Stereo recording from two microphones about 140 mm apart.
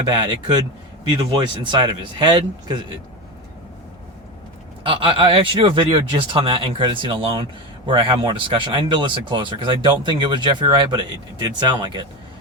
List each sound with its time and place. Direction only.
0.0 s speech: 35° right (ahead or behind)
4.9 s speech: 40° right (ahead or behind)